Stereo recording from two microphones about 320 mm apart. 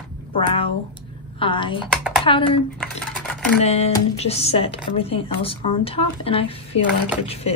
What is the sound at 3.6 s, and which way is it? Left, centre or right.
A woman's voice, centre.